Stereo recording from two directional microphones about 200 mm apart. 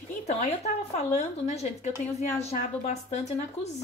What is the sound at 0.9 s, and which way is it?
A woman's voice, 35° left (ahead or behind).